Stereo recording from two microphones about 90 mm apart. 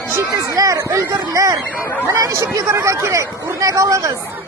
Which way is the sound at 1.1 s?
45° right (ahead or behind).